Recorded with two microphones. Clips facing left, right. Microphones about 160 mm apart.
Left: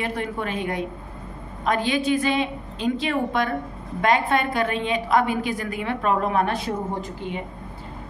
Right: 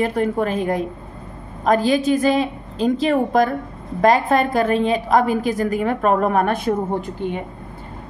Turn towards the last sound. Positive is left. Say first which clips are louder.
# right 6 dB
turn(degrees=-55)  # may be behind; listen again after turning